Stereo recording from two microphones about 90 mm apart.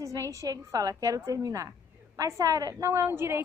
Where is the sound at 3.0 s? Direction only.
25° right (ahead or behind).